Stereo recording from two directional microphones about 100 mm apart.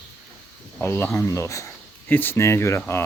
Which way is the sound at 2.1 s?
20° left (ahead or behind).